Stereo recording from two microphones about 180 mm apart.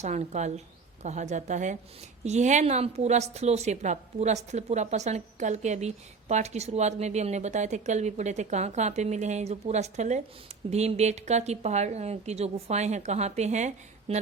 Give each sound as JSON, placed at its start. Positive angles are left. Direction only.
{"t": 0.0, "sound": "a woman's voice", "side_deg": -40}